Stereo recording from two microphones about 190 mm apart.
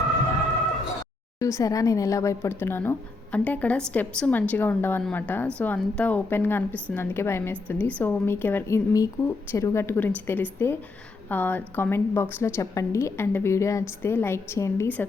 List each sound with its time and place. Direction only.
1.4 s a woman's voice: 15° left (ahead or behind)